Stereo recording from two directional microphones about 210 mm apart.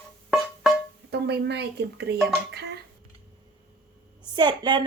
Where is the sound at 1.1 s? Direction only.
50° right (ahead or behind).